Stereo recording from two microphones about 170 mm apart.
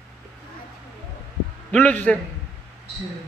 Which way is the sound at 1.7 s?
10° left (ahead or behind).